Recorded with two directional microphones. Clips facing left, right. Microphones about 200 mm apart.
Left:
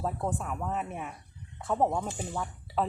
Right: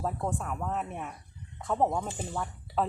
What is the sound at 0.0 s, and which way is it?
Speech, centre (ahead or behind).